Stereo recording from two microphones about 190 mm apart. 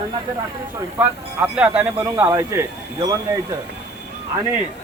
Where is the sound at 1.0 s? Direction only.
10° right (ahead or behind).